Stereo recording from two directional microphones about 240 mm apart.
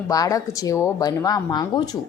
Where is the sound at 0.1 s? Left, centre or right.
Centre.